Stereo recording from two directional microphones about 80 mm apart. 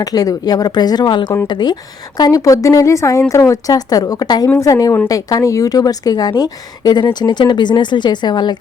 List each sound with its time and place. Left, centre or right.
0.0 s a woman's voice: left
4.6 s a woman's voice: left